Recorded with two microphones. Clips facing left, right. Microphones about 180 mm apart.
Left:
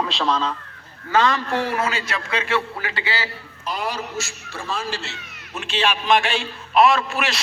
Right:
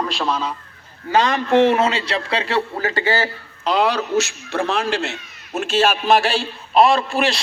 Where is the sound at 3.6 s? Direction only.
70° right (ahead or behind).